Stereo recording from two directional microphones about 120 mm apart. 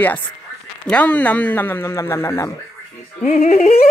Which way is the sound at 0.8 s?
10° left (ahead or behind).